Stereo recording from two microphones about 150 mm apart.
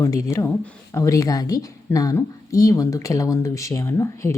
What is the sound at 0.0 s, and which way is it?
A woman's voice, 20° left (ahead or behind).